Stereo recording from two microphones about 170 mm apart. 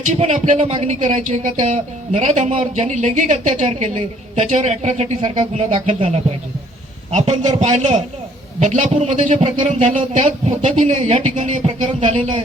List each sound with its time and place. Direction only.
0.1 s speech: 45° right (ahead or behind)
7.3 s speech: 45° right (ahead or behind)